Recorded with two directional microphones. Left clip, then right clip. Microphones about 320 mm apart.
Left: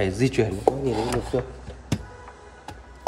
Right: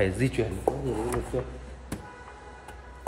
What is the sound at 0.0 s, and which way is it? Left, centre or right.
Speech, centre.